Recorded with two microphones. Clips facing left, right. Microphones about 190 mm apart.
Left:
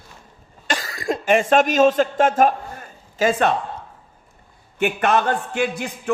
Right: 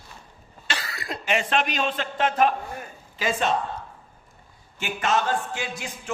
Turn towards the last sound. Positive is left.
turn(degrees=60)  # may be behind; listen again after turning